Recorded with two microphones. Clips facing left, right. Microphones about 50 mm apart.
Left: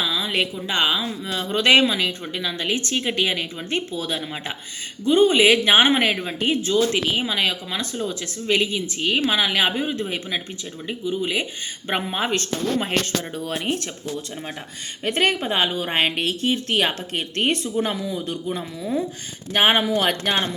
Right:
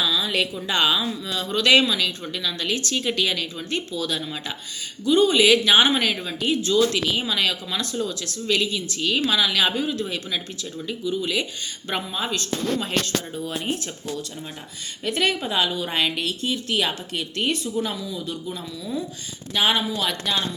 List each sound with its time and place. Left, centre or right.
0.0 s a sound: left
0.7 s speech: left
12.0 s speech: left
13.3 s speech: left
15.0 s speech: left